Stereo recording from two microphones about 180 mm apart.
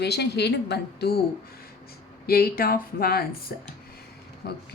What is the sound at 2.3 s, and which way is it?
Speech, 55° left (ahead or behind).